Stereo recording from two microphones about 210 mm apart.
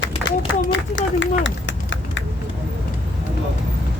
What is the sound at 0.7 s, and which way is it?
Speech, 60° left (ahead or behind).